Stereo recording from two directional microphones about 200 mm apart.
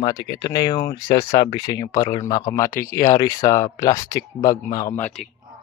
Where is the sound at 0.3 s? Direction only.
20° left (ahead or behind).